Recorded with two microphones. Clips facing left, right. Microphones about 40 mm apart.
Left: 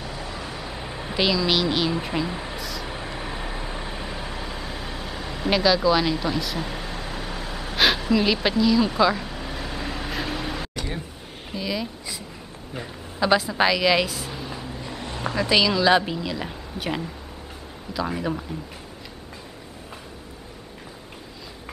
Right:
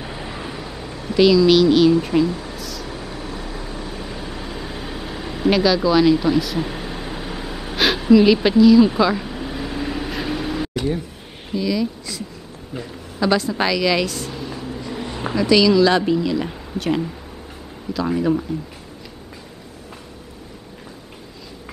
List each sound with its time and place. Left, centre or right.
0.0 s vehicle: right
0.7 s a woman's voice: left
2.3 s a sound: centre
2.9 s vehicle: left
4.1 s vehicle: centre
11.5 s a woman's voice: centre
15.0 s a sound: centre
15.3 s speech: centre